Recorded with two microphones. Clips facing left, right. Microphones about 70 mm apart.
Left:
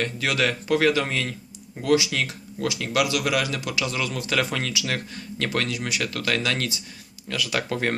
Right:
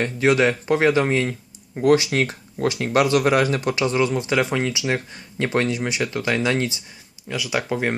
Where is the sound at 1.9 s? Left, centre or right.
Right.